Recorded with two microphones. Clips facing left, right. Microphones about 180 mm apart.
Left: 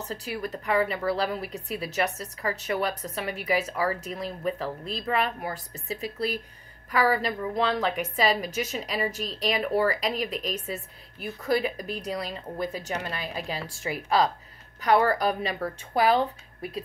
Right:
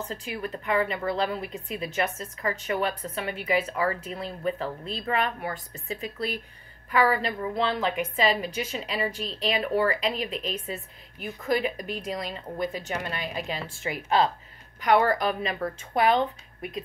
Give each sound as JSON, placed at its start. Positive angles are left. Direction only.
{"t": 0.1, "sound": "a woman's voice", "side_deg": 35}